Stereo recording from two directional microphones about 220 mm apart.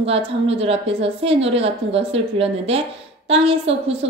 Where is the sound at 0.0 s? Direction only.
25° right (ahead or behind).